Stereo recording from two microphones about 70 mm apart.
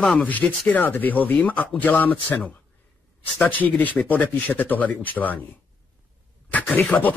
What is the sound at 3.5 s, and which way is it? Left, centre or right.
Speech, left.